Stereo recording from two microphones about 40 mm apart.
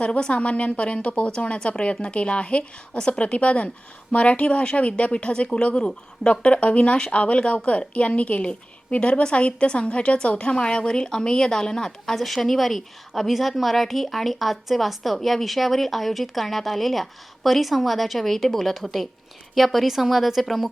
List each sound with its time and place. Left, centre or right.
0.0 s a woman's voice: left; by 20.7 s centre